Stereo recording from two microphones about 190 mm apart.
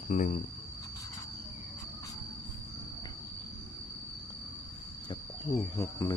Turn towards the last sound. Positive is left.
turn(degrees=15)  # may be behind; listen again after turning